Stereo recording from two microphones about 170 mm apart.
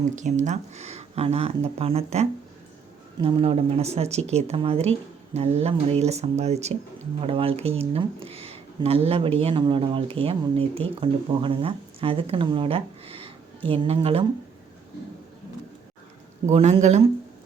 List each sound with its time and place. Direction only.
0.2 s speech: 45° right (ahead or behind)
16.5 s speech: 40° right (ahead or behind)